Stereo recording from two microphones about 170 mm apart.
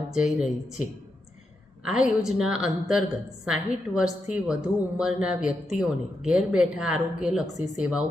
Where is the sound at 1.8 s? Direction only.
5° right (ahead or behind).